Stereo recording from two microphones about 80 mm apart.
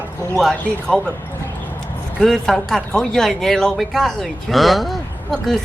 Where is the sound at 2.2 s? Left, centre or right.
Centre.